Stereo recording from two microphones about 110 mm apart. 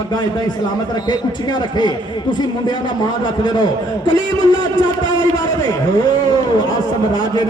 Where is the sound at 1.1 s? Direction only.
40° left (ahead or behind).